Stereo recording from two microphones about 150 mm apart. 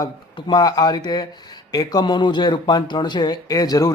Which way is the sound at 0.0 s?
30° left (ahead or behind).